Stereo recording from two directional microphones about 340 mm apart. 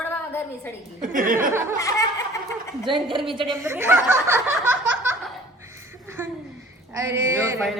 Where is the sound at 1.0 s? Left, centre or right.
Right.